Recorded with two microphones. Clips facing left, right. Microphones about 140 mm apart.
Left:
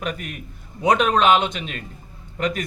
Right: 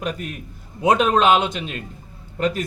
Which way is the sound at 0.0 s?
35° right (ahead or behind).